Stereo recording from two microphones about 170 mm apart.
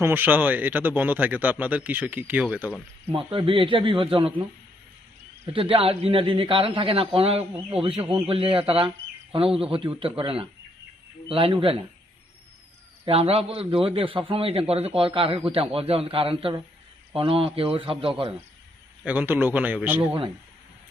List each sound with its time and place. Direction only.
0.0 s a man's voice: 10° right (ahead or behind)
3.1 s a man's voice: 30° right (ahead or behind)
5.5 s a man's voice: 35° right (ahead or behind)
13.1 s a man's voice: 35° right (ahead or behind)
19.0 s a man's voice: 10° right (ahead or behind)